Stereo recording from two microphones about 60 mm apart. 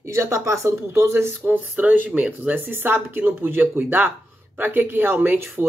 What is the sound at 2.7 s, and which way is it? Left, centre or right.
Speech, right.